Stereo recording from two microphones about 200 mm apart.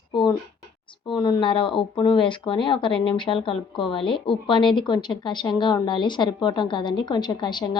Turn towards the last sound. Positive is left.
turn(degrees=20)  # may be behind; listen again after turning